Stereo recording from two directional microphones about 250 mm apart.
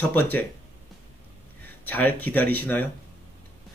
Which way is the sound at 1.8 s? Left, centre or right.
Centre.